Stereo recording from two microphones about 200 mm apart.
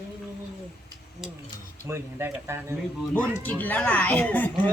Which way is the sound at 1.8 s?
10° right (ahead or behind).